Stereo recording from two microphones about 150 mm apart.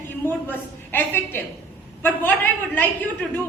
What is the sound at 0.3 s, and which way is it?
A woman's voice, 15° left (ahead or behind).